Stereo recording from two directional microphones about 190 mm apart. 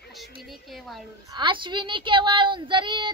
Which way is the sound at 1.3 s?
25° right (ahead or behind).